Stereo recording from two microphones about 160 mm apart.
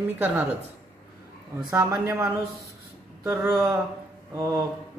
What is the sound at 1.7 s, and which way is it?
A man's voice, 20° right (ahead or behind).